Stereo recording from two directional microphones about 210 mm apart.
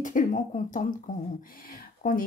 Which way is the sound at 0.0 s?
35° left (ahead or behind).